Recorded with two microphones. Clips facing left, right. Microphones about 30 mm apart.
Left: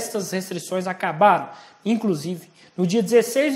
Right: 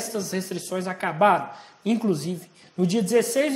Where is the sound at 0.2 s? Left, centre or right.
Left.